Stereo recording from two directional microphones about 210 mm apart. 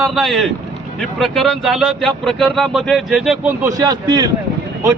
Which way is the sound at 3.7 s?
15° right (ahead or behind).